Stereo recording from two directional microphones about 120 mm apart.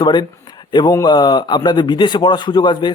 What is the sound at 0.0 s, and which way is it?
A man's voice, 40° left (ahead or behind).